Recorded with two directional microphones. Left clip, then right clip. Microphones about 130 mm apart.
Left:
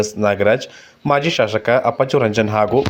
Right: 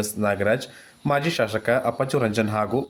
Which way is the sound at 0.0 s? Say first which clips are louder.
Left 8 dB; 20° left (ahead or behind).